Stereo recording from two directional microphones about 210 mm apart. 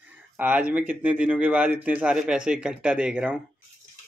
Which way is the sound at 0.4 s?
5° right (ahead or behind).